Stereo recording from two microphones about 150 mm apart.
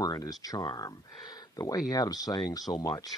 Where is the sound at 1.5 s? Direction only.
25° left (ahead or behind).